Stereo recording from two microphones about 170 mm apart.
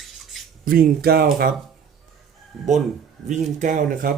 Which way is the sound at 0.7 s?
60° right (ahead or behind).